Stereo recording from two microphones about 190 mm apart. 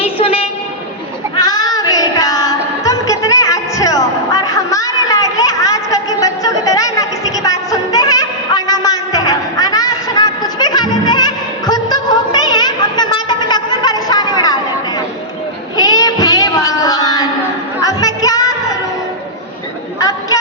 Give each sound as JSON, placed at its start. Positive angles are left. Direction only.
{"t": 0.0, "sound": "vehicle", "side_deg": 30}
{"t": 1.4, "sound": "child singing", "side_deg": 20}
{"t": 15.8, "sound": "child singing", "side_deg": 20}
{"t": 17.7, "sound": "music", "side_deg": 20}
{"t": 20.0, "sound": "a sound", "side_deg": 15}